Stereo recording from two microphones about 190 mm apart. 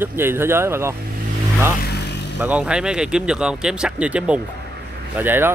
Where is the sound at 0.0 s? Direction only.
10° right (ahead or behind).